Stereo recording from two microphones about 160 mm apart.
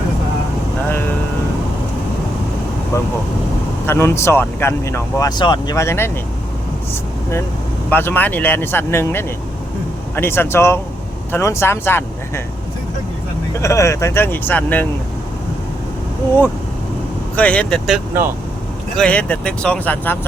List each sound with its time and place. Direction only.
2.9 s speech: 20° left (ahead or behind)
7.9 s speech: 10° left (ahead or behind)
13.5 s speech: 20° left (ahead or behind)
17.3 s speech: 10° left (ahead or behind)